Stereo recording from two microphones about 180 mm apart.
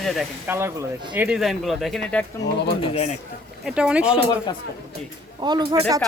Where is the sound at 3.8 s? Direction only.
5° right (ahead or behind).